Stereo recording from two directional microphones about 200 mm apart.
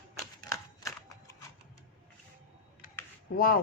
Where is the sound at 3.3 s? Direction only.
45° left (ahead or behind).